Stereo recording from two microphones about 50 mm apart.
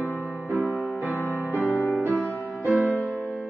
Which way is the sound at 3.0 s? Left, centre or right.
Right.